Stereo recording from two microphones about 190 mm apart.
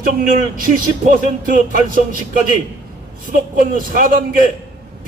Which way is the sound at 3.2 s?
45° right (ahead or behind).